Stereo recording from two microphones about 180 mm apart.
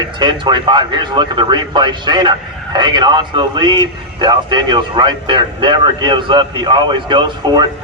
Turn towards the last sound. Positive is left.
turn(degrees=-25)  # may be behind; listen again after turning